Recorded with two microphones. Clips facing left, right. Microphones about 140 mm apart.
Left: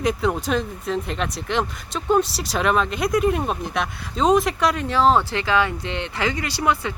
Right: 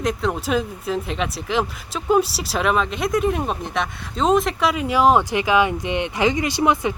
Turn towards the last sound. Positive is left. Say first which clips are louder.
# right 3 dB
turn(degrees=-20)  # may be behind; listen again after turning